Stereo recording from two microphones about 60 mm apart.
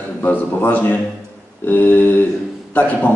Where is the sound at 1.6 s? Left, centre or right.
Left.